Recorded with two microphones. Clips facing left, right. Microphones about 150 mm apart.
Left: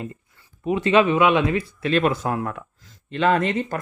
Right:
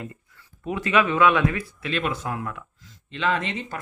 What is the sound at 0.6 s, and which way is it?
Speech, 20° left (ahead or behind).